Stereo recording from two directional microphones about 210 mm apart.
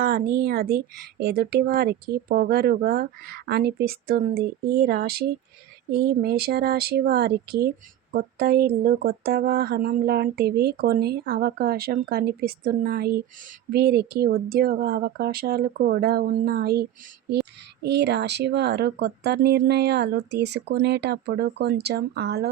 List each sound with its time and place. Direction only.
0.3 s speech: 45° right (ahead or behind)